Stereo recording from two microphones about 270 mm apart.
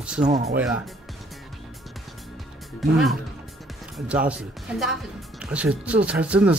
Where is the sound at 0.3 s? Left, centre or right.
Right.